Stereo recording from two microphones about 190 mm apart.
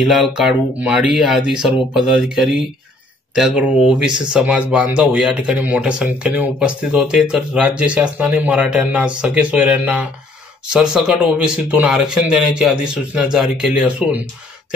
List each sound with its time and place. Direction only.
0.0 s speech: centre (ahead or behind)